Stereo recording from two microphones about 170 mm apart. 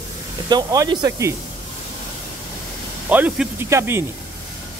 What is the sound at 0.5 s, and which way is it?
Speech, 25° right (ahead or behind).